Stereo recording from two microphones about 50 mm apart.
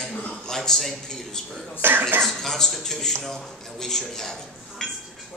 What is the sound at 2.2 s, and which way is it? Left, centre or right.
A man's voice, centre.